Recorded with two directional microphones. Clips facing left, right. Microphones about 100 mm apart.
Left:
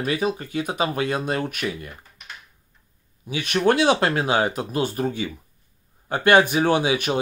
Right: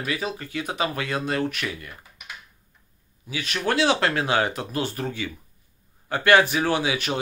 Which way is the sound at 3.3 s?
20° left (ahead or behind).